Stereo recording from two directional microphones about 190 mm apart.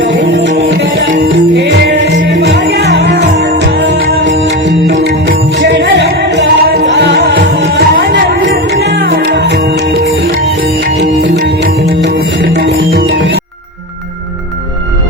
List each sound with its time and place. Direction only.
0.0 s music: 70° right (ahead or behind)